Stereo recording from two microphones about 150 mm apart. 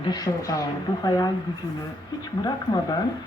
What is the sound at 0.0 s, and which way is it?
Speech, 25° left (ahead or behind).